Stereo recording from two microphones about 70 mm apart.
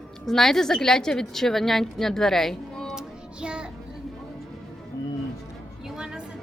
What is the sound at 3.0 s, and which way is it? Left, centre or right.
Music, centre.